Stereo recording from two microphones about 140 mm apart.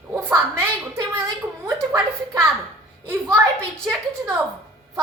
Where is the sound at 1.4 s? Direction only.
10° right (ahead or behind).